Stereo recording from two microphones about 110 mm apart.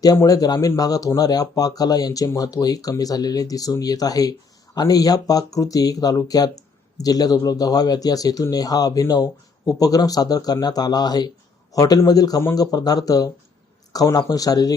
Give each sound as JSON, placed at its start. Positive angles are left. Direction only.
{"t": 0.2, "sound": "speech", "side_deg": 35}